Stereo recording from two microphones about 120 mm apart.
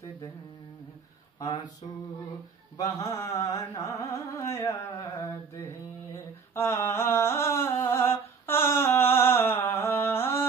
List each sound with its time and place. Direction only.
2.8 s music: 30° left (ahead or behind)